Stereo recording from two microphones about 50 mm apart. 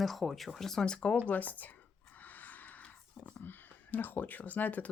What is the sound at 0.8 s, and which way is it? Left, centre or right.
Speech, centre.